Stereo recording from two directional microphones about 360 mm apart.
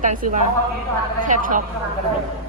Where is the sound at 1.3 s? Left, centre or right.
Right.